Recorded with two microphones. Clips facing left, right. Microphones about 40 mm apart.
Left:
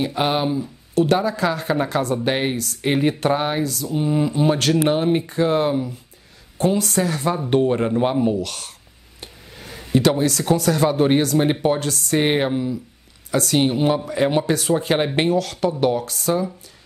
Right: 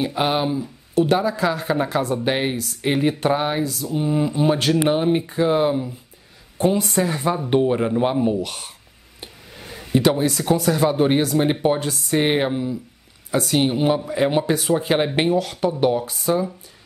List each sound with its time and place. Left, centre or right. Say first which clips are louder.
0.0 s speech: even; centre
6.6 s a woman's voice: even; centre
7.5 s speech: left 1 dB; centre
8.4 s a woman's voice: even; centre
9.2 s speech: even; centre
11.6 s a woman's voice: even; centre
12.2 s speech: even; centre
15.3 s a woman's voice: even; centre